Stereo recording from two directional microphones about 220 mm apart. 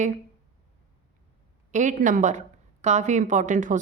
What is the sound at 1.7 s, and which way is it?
Speech, 35° right (ahead or behind).